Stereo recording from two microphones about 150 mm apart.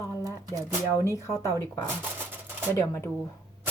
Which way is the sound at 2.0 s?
15° right (ahead or behind).